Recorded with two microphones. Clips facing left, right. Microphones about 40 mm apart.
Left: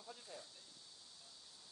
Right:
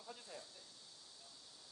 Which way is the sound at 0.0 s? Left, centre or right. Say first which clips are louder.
Right 1 dB; centre.